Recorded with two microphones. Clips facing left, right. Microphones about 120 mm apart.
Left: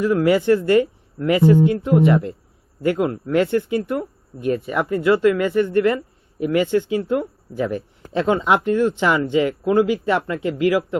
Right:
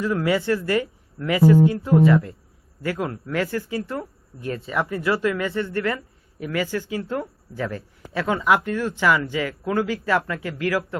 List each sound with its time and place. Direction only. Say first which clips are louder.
0.0 s speech: left 5 dB; 20° left (ahead or behind)